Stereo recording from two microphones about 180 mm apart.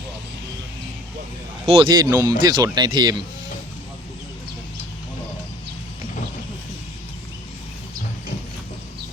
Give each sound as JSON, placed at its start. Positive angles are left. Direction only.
{"t": 1.6, "sound": "speech", "side_deg": -30}
{"t": 2.0, "sound": "speech", "side_deg": -20}